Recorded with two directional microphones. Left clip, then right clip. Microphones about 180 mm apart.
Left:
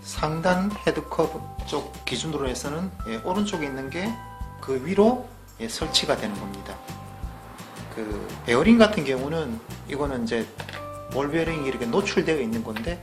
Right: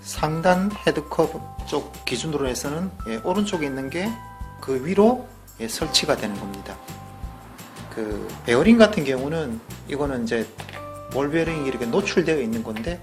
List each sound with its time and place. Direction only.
0.1 s speech: 25° right (ahead or behind)
8.0 s speech: 20° right (ahead or behind)